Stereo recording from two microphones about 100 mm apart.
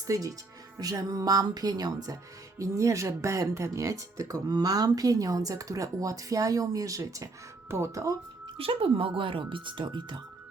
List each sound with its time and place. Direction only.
0.1 s speech: 35° right (ahead or behind)
8.5 s speech: 70° right (ahead or behind); by 10.2 s 50° right (ahead or behind)